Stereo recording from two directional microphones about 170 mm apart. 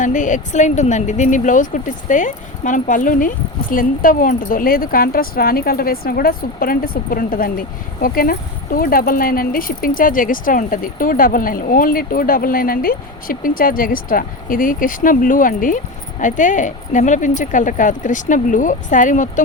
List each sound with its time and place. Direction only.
0.0 s speech: 50° left (ahead or behind)